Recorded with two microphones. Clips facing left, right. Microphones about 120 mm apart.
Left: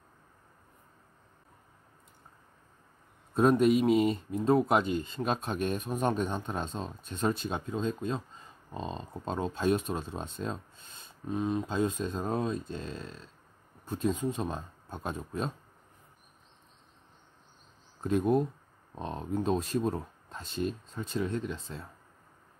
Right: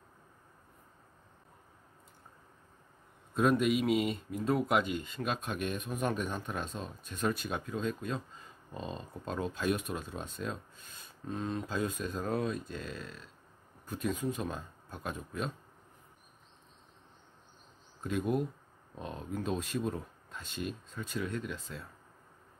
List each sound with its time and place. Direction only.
3.3 s speech: 35° left (ahead or behind)
11.2 s speech: 15° left (ahead or behind)
11.7 s speech: 25° left (ahead or behind)
18.0 s speech: 35° left (ahead or behind)